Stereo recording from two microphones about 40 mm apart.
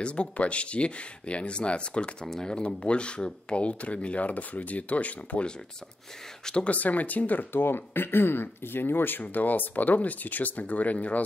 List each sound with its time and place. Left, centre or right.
0.0 s speech: left
2.2 s speech: centre
2.5 s speech: left
6.5 s speech: left
7.5 s speech: left
9.2 s speech: left